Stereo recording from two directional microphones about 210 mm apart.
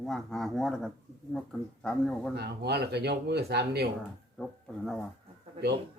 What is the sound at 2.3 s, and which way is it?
Speech, 50° right (ahead or behind).